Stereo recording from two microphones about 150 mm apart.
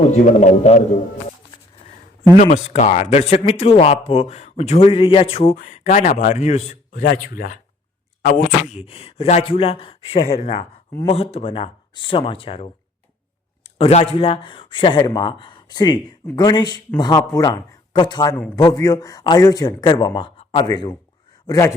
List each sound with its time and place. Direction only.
0.1 s speech: 50° left (ahead or behind)
2.3 s speech: 55° left (ahead or behind)
5.5 s speech: 60° left (ahead or behind)
7.0 s speech: 90° left
8.6 s speech: 45° left (ahead or behind)
13.7 s speech: 40° left (ahead or behind)
21.4 s speech: 20° left (ahead or behind)